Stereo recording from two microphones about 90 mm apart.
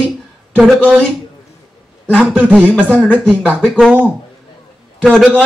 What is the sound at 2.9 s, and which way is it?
Speech, 10° left (ahead or behind).